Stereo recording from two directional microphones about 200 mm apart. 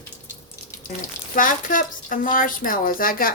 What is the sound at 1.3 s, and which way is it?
Speech, 45° left (ahead or behind).